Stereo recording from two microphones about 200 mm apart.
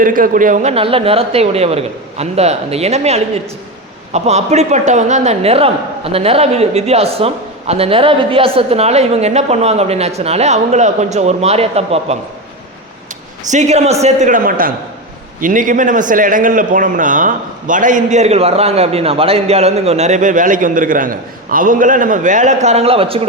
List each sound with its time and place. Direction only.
0.0 s a man's voice: 45° right (ahead or behind)
13.5 s a man's voice: 35° right (ahead or behind)